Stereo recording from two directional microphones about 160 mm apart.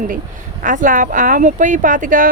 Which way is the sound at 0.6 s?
55° right (ahead or behind).